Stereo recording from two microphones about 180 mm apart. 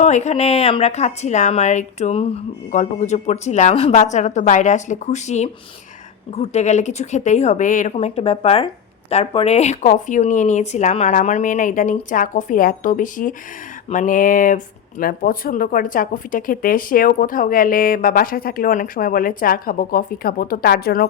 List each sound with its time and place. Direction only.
0.0 s speech: 40° left (ahead or behind); by 21.1 s 55° left (ahead or behind)